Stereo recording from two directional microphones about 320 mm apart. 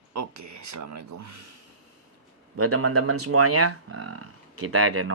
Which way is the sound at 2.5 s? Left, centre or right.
Right.